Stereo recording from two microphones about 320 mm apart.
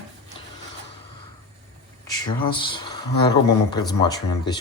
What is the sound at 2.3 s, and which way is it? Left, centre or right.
Speech, centre.